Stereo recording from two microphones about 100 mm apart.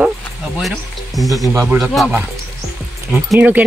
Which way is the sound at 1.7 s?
25° right (ahead or behind).